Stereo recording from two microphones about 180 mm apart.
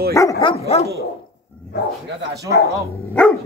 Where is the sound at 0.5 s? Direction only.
35° left (ahead or behind).